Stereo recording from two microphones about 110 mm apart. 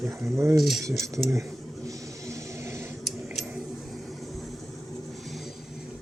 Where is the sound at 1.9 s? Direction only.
30° right (ahead or behind).